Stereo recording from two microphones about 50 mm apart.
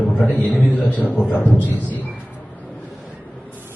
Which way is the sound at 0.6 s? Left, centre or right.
Left.